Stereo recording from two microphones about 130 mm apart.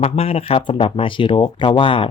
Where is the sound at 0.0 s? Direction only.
50° left (ahead or behind).